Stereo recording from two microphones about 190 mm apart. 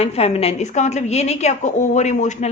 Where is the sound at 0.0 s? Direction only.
35° left (ahead or behind).